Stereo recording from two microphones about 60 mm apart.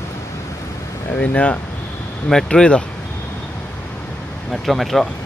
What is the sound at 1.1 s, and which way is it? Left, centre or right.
Speech, left.